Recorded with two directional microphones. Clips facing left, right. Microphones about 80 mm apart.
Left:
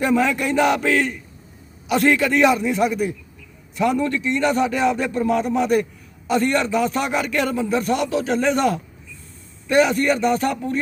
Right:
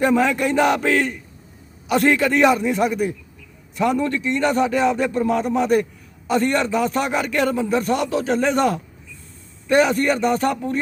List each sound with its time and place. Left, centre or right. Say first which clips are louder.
0.0 s a man's voice: right 1 dB; right